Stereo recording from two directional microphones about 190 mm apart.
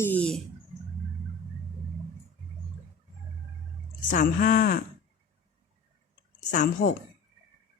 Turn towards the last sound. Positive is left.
turn(degrees=40)  # may be behind; listen again after turning